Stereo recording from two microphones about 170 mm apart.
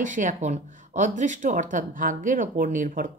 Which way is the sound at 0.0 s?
50° right (ahead or behind).